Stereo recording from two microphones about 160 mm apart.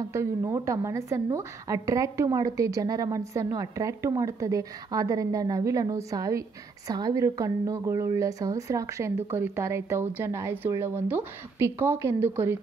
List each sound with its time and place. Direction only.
0.1 s a woman's voice: 15° right (ahead or behind)